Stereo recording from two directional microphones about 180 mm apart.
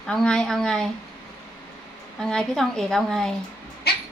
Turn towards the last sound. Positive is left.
turn(degrees=60)  # may be behind; listen again after turning